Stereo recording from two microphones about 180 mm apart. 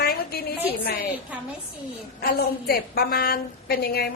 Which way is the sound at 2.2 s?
60° left (ahead or behind).